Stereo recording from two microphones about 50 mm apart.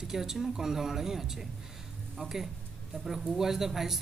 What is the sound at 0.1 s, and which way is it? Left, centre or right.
Speech, centre.